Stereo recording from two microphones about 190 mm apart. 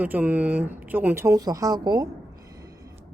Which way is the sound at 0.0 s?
10° right (ahead or behind).